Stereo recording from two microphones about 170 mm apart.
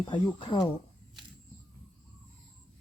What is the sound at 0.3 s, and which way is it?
Speech, 30° left (ahead or behind).